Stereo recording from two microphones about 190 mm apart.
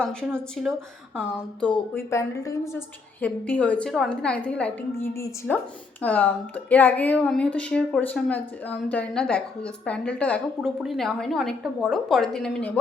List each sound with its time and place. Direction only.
0.0 s a woman's voice: 5° left (ahead or behind)
2.0 s a woman's voice: 15° left (ahead or behind)